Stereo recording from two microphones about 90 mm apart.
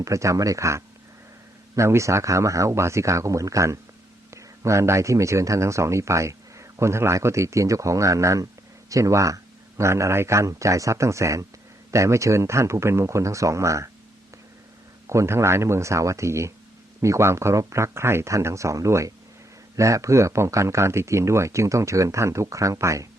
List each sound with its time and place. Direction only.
0.0 s speech: 35° right (ahead or behind)
15.0 s speech: 35° right (ahead or behind)